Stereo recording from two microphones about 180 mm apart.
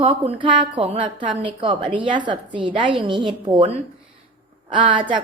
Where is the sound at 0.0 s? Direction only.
30° right (ahead or behind).